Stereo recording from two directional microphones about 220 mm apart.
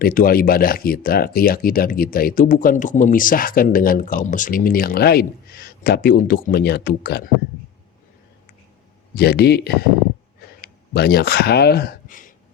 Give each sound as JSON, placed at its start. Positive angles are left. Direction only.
{"t": 0.0, "sound": "speech", "side_deg": 40}
{"t": 9.1, "sound": "speech", "side_deg": 50}